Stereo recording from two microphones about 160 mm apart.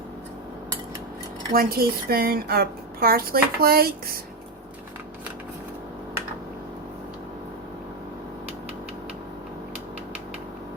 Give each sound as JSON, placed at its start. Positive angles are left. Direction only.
{"t": 1.5, "sound": "a woman's voice", "side_deg": -70}